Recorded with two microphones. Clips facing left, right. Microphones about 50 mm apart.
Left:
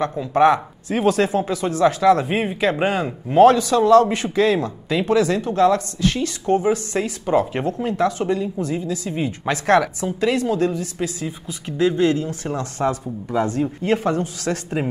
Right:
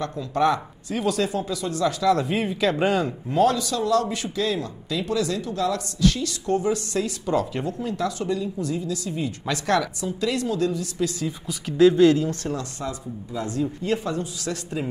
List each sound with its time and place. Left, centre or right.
0.0 s a man's voice: left
3.3 s a man's voice: left
11.1 s speech: centre
12.7 s speech: left